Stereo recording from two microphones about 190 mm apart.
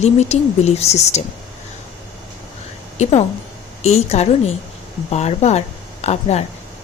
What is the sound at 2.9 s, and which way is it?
A woman's voice, 35° left (ahead or behind).